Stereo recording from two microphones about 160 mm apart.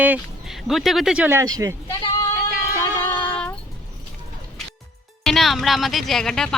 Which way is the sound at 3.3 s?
10° left (ahead or behind).